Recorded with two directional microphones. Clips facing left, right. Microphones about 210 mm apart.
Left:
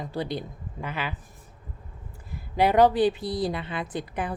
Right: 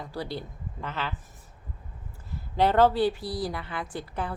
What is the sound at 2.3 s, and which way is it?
A woman's voice, 10° left (ahead or behind).